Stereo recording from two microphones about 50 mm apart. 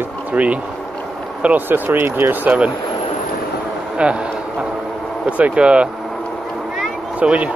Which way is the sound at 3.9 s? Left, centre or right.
Right.